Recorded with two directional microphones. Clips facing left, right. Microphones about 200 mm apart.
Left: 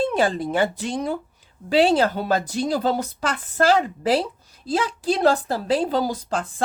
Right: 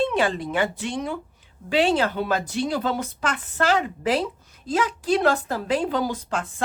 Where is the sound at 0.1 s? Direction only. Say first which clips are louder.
Left 2 dB; 40° left (ahead or behind).